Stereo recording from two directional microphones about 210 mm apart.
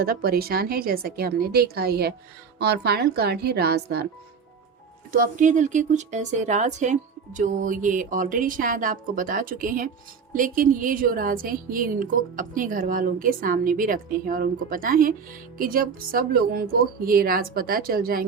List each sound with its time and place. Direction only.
0.0 s a woman's voice: 45° right (ahead or behind)
5.1 s a woman's voice: 40° right (ahead or behind)